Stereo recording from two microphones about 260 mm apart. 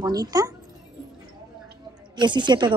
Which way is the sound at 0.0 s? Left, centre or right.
Centre.